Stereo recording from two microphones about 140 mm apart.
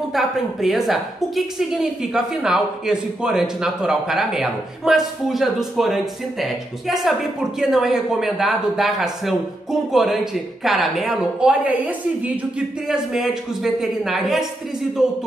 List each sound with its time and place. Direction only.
0.1 s a woman's voice: centre (ahead or behind)